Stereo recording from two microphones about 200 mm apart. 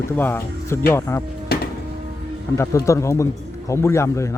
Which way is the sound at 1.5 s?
50° left (ahead or behind).